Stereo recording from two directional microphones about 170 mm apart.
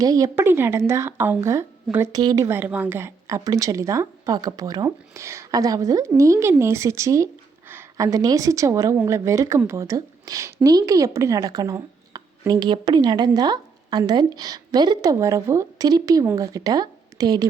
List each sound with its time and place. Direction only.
0.0 s a woman's voice: 20° right (ahead or behind)